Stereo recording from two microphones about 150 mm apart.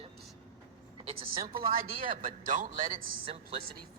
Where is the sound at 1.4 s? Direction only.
75° right (ahead or behind).